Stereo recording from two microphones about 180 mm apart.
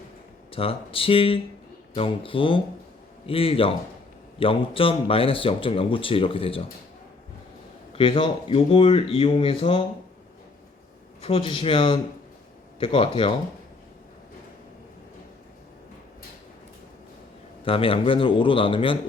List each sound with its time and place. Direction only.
0.5 s a man's voice: 30° left (ahead or behind)
7.9 s speech: 30° left (ahead or behind)
11.2 s a man's voice: 30° left (ahead or behind)
17.7 s a man's voice: 30° left (ahead or behind)